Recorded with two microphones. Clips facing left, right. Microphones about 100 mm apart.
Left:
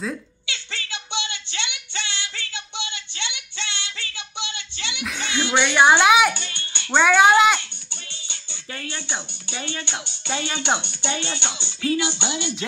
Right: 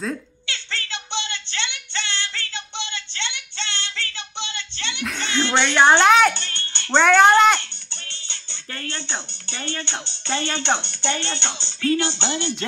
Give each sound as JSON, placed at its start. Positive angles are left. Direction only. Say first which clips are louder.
{"t": 0.7, "sound": "a sound", "louder": "right 1 dB", "side_deg": 15}
{"t": 1.6, "sound": "female singing", "louder": "right 1 dB", "side_deg": 15}
{"t": 3.3, "sound": "music", "louder": "right 2 dB", "side_deg": 15}
{"t": 3.9, "sound": "child singing", "louder": "right 4 dB", "side_deg": -55}
{"t": 4.4, "sound": "a sound", "louder": "right 1 dB", "side_deg": 15}
{"t": 5.0, "sound": "music", "louder": "right 2 dB", "side_deg": 10}
{"t": 11.0, "sound": "speech", "louder": "right 2 dB", "side_deg": 15}